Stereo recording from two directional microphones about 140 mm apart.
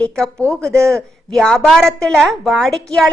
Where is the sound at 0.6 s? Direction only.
20° right (ahead or behind).